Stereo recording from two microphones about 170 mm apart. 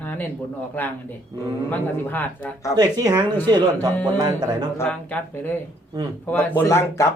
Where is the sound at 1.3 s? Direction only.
20° right (ahead or behind).